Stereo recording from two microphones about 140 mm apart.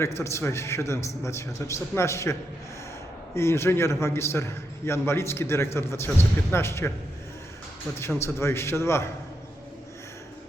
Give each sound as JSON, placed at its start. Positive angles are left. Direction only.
{"t": 0.0, "sound": "a man's voice", "side_deg": 20}
{"t": 3.3, "sound": "a man's voice", "side_deg": 20}
{"t": 7.9, "sound": "a man's voice", "side_deg": 20}